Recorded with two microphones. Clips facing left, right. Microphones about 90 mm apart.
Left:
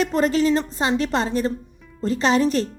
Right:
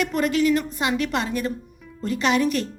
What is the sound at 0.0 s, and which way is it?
A woman's voice, 30° left (ahead or behind).